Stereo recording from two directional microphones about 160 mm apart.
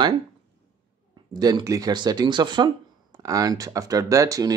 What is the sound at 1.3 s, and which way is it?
Speech, 25° right (ahead or behind).